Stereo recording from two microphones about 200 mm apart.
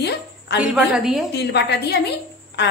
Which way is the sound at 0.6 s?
5° right (ahead or behind).